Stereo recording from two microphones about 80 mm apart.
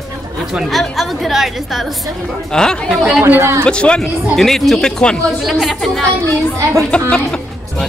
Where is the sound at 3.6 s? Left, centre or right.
Centre.